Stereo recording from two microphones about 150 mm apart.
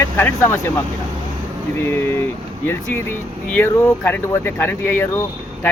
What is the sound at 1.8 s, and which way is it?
Speech, 15° left (ahead or behind).